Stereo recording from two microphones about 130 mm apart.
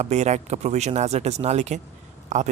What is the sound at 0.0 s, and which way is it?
Speech, 60° right (ahead or behind).